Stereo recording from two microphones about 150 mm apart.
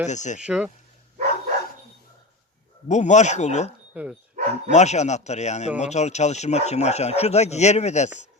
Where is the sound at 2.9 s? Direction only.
50° left (ahead or behind).